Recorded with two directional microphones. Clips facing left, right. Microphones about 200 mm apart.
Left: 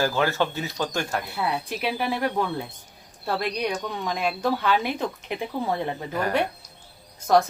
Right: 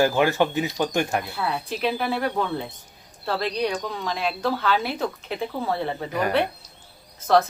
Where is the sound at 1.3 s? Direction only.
15° left (ahead or behind).